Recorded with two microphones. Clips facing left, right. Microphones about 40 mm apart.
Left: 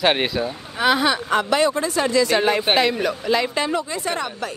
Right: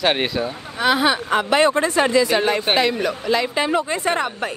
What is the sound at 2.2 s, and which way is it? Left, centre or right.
Speech, centre.